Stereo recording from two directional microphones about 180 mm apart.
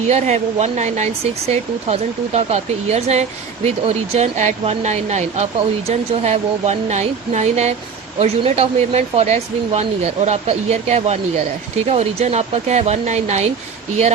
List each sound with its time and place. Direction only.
0.1 s speech: 40° right (ahead or behind)